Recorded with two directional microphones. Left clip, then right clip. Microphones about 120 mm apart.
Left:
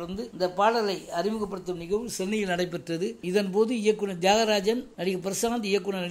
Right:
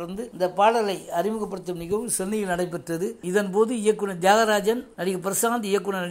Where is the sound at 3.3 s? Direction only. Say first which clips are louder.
Right 3 dB; 25° left (ahead or behind).